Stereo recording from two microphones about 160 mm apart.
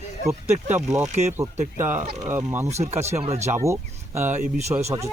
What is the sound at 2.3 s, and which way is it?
Speech, 15° right (ahead or behind).